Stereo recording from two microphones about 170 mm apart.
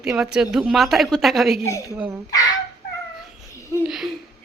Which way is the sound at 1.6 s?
20° left (ahead or behind).